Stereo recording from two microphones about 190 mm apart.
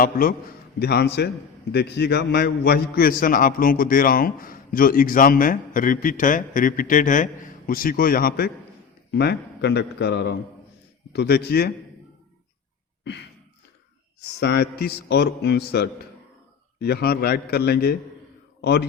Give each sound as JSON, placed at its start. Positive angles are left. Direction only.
{"t": 0.0, "sound": "a man's voice", "side_deg": 50}
{"t": 0.8, "sound": "a man's voice", "side_deg": 60}
{"t": 9.1, "sound": "a man's voice", "side_deg": 60}
{"t": 14.3, "sound": "a man's voice", "side_deg": 60}